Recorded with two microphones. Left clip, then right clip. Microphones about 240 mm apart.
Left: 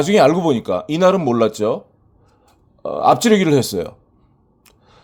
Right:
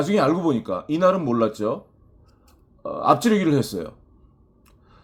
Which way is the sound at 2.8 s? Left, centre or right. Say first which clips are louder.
Left 5 dB; left.